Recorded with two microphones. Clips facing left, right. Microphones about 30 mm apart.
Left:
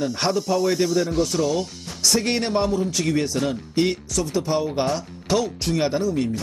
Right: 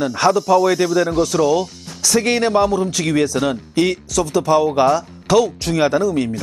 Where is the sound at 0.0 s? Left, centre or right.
Right.